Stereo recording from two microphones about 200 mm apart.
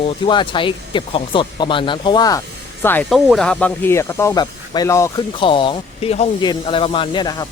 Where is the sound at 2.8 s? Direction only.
10° left (ahead or behind).